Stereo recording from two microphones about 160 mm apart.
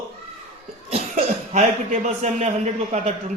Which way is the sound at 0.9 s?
45° right (ahead or behind).